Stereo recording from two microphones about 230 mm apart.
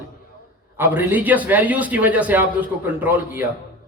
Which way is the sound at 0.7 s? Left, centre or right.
Centre.